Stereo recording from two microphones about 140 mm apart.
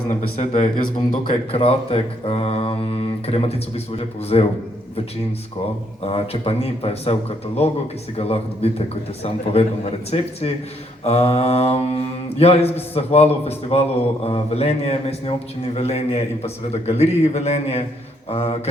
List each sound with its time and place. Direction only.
0.3 s speech: 35° left (ahead or behind)
6.1 s speech: 45° left (ahead or behind)